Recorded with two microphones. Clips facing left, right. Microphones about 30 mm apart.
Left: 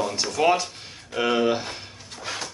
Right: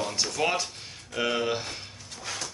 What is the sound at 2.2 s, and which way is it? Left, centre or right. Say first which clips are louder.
Music: left 4 dB; centre.